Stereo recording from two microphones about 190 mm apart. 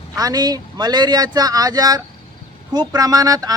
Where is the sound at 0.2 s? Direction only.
20° right (ahead or behind).